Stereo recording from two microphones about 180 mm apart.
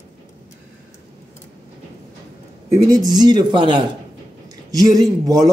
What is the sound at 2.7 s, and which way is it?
A man's voice, 20° right (ahead or behind).